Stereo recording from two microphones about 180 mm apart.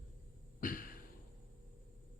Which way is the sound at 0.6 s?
50° left (ahead or behind).